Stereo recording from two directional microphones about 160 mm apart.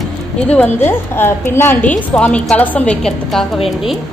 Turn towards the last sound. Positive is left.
turn(degrees=0)  # may be behind; listen again after turning